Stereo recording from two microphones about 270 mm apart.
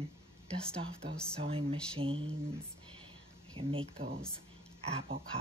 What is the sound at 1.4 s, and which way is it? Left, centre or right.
Music, right.